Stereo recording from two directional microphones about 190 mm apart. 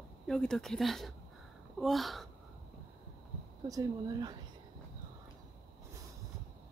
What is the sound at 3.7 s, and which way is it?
Speech, 20° right (ahead or behind).